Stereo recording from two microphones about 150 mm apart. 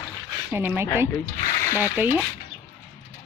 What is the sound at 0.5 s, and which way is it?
Speech, 15° right (ahead or behind).